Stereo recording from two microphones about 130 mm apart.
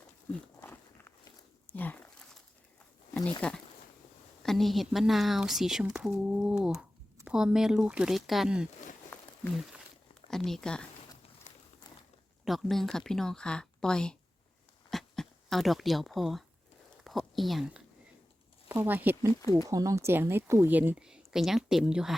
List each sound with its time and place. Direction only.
0.6 s walk: 15° left (ahead or behind)
1.7 s a sound: 15° left (ahead or behind)
3.4 s speech: 10° left (ahead or behind)
10.2 s speech: 5° left (ahead or behind)
12.5 s speech: centre (ahead or behind)
14.8 s a sound: 5° left (ahead or behind)
18.7 s a woman's voice: 15° right (ahead or behind)
19.6 s a woman's voice: 25° right (ahead or behind); by 22.1 s 5° right (ahead or behind)